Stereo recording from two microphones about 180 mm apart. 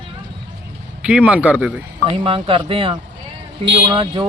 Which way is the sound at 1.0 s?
5° right (ahead or behind).